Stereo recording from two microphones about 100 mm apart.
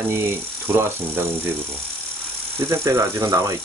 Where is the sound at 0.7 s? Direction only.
25° right (ahead or behind).